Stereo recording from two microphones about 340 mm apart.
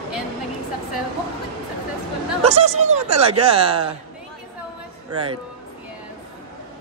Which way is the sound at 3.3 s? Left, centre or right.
Centre.